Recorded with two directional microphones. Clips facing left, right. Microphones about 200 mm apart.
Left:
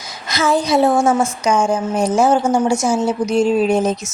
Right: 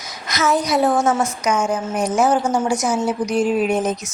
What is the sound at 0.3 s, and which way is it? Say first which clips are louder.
A woman's voice: left 2 dB; 30° left (ahead or behind).